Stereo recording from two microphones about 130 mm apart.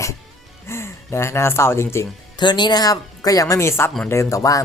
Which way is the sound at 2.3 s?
35° left (ahead or behind).